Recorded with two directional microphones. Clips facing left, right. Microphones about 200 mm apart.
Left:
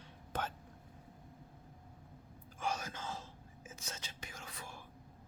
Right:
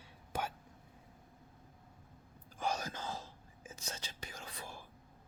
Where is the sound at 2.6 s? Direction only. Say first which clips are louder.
Right 2 dB; 35° right (ahead or behind).